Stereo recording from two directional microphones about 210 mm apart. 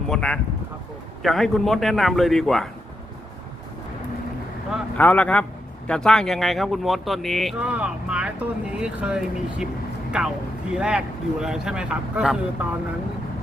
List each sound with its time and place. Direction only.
0.1 s speech: 5° left (ahead or behind)
4.7 s a man's voice: 5° left (ahead or behind)
10.7 s speech: 5° right (ahead or behind)